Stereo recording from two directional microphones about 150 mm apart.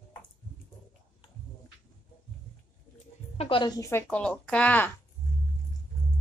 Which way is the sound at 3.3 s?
40° left (ahead or behind).